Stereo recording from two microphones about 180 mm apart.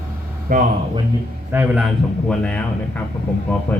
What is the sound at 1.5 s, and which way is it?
A man's voice, 10° right (ahead or behind).